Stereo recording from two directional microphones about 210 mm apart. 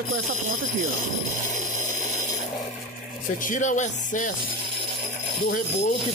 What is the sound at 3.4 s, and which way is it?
Speech, 35° left (ahead or behind).